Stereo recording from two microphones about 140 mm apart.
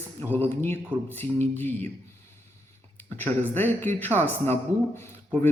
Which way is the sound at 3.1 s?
15° left (ahead or behind).